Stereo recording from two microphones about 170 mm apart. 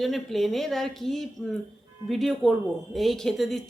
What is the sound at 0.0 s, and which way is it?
A woman's voice, centre (ahead or behind).